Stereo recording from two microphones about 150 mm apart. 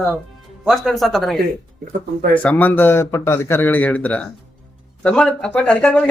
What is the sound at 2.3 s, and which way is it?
Speech, 10° left (ahead or behind).